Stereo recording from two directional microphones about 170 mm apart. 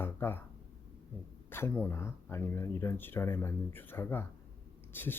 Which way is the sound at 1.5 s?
15° left (ahead or behind).